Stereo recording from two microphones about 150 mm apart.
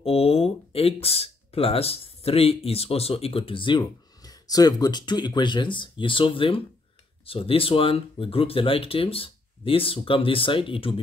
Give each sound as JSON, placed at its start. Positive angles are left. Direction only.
{"t": 0.0, "sound": "speech", "side_deg": 40}